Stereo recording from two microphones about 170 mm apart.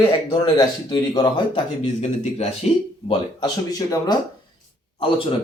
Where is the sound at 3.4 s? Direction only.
20° left (ahead or behind).